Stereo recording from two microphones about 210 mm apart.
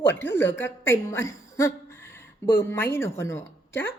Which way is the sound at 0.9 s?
15° left (ahead or behind).